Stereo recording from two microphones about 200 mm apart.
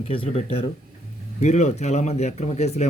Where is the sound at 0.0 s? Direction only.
30° left (ahead or behind).